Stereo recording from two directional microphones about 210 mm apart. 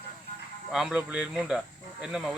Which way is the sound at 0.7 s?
5° right (ahead or behind).